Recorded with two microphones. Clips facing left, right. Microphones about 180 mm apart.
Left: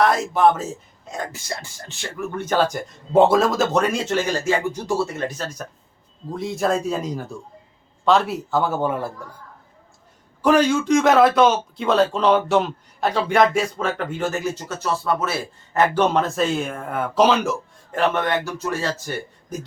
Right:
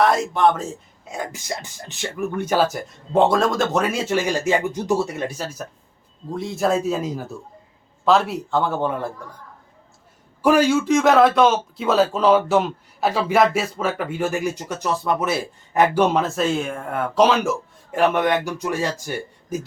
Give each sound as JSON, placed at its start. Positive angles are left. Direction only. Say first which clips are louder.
{"t": 0.0, "sound": "speech", "louder": "even", "side_deg": 0}
{"t": 1.1, "sound": "speech", "louder": "right 1 dB", "side_deg": -15}
{"t": 10.4, "sound": "speech", "louder": "right 1 dB", "side_deg": -10}
{"t": 16.1, "sound": "speech", "louder": "even", "side_deg": 0}
{"t": 18.1, "sound": "speech", "louder": "right 3 dB", "side_deg": -15}